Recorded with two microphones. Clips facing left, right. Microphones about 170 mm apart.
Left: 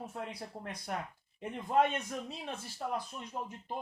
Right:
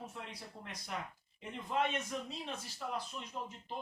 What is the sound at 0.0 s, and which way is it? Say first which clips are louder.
Speech: left 6 dB; 55° left (ahead or behind).